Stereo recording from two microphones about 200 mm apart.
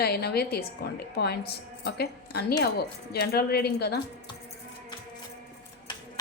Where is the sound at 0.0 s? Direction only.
55° left (ahead or behind).